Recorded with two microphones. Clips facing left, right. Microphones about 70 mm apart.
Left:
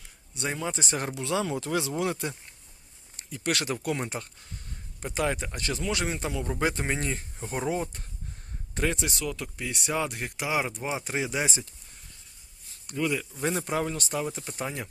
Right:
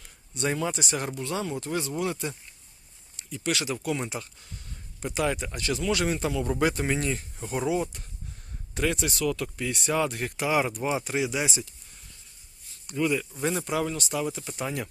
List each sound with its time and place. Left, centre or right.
0.3 s speech: centre
0.7 s speech: left
1.1 s speech: left
2.0 s speech: left
5.0 s speech: left
5.8 s speech: left
12.9 s speech: left
14.3 s speech: left